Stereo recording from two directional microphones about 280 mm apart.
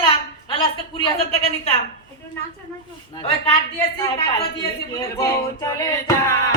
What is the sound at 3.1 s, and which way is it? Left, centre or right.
Speech, centre.